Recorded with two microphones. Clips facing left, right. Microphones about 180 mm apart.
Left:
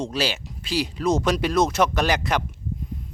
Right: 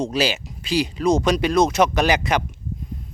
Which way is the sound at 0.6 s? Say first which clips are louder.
Right 3 dB; centre (ahead or behind).